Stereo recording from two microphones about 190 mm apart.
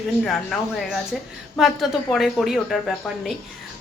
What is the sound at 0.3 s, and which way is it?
A woman's voice, centre (ahead or behind).